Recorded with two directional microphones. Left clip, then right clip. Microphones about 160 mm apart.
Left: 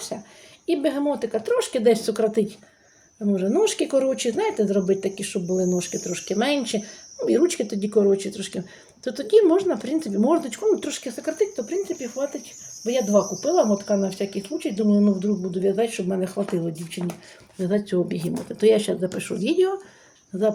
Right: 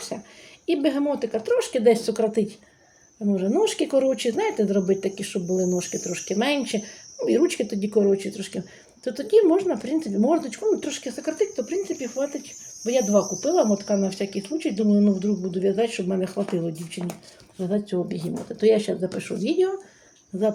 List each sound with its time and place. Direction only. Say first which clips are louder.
0.1 s a sound: left 1 dB; 5° right (ahead or behind)
0.6 s speech: even; 5° right (ahead or behind)
17.7 s speech: left 3 dB; 25° left (ahead or behind); by 19.7 s 10° left (ahead or behind)